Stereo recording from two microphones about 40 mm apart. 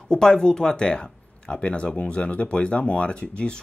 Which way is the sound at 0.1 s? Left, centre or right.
Centre.